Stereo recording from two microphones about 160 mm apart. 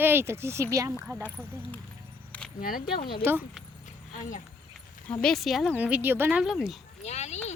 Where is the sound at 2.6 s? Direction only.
60° left (ahead or behind).